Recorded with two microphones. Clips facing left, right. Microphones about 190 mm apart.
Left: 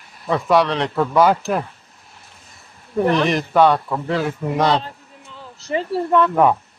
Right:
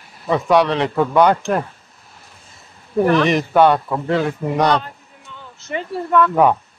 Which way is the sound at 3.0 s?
Centre (ahead or behind).